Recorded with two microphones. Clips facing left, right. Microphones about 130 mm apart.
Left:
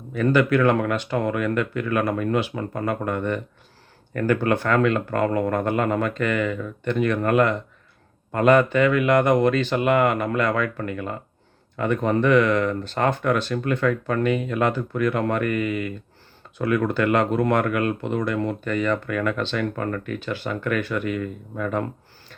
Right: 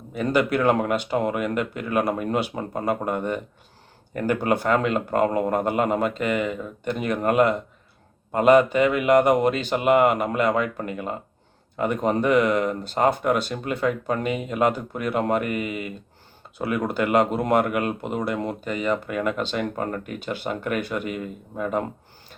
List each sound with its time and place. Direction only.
0.2 s speech: 15° right (ahead or behind)
12.2 s speech: 10° right (ahead or behind)